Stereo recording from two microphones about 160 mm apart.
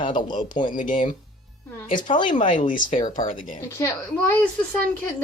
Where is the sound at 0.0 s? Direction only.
30° left (ahead or behind).